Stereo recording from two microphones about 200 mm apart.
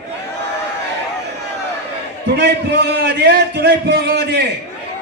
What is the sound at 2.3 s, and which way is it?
A man's voice, 55° right (ahead or behind).